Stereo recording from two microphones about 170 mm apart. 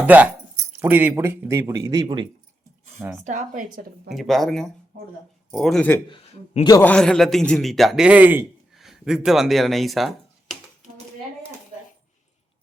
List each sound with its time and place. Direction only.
0.0 s speech: 10° right (ahead or behind); by 2.3 s 25° right (ahead or behind)
3.0 s speech: 15° right (ahead or behind)
3.2 s a woman's voice: 50° right (ahead or behind)
4.1 s a man's voice: centre (ahead or behind)
6.1 s a man's voice: 40° left (ahead or behind)
6.8 s a man's voice: 5° left (ahead or behind)